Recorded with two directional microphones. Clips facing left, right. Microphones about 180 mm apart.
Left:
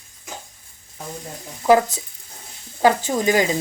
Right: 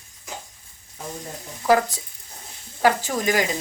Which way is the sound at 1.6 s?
20° left (ahead or behind).